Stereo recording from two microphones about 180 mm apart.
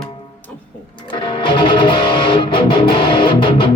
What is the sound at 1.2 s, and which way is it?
Music, 25° left (ahead or behind).